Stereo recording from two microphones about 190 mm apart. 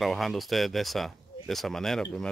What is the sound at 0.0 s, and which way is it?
Speech, centre (ahead or behind).